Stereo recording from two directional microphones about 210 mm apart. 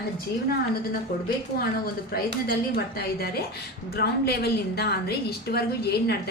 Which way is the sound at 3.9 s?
50° left (ahead or behind).